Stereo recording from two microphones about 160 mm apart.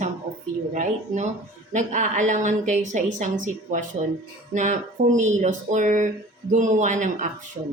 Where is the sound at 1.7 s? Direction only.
50° right (ahead or behind).